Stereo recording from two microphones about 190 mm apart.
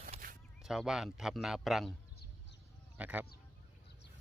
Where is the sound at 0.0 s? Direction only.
45° right (ahead or behind).